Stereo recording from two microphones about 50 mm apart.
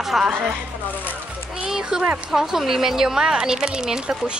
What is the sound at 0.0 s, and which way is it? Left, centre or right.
Music, centre.